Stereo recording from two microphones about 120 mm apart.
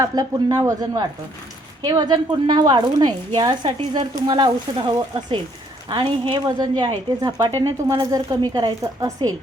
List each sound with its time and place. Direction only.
0.0 s a woman's voice: 30° right (ahead or behind)